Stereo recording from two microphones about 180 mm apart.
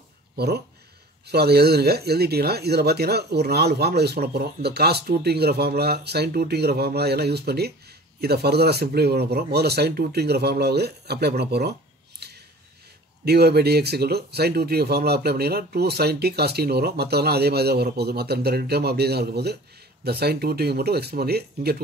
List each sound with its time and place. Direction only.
1.2 s speech: 65° right (ahead or behind)
12.2 s a sound: 65° right (ahead or behind)
13.2 s speech: 65° right (ahead or behind)